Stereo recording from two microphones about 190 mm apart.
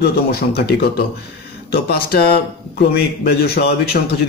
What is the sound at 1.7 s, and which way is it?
A man's voice, 55° left (ahead or behind).